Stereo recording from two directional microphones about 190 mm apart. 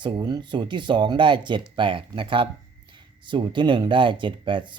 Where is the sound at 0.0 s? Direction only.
25° right (ahead or behind).